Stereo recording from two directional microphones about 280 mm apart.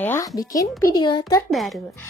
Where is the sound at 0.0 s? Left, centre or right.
Centre.